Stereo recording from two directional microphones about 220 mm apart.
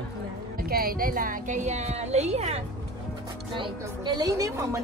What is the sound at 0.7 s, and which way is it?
A woman's voice, 40° right (ahead or behind).